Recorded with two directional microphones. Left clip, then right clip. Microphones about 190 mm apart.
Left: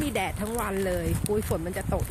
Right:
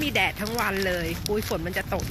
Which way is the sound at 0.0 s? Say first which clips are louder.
Right 5 dB; 15° left (ahead or behind).